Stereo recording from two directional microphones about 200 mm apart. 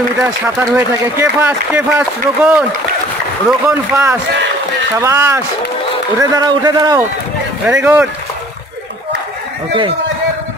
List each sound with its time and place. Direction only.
0.2 s speech: 10° right (ahead or behind)
3.6 s speech: 15° right (ahead or behind)
7.6 s speech: 5° right (ahead or behind)